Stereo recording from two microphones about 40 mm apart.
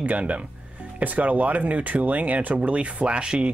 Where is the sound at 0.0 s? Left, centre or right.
Right.